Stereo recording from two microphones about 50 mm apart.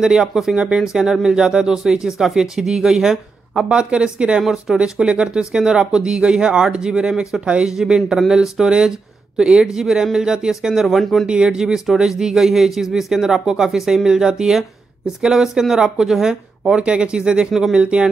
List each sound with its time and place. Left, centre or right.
0.0 s speech: centre
4.4 s speech: centre; by 7.7 s right
7.7 s speech: centre
11.2 s speech: centre
11.6 s speech: centre
17.7 s speech: right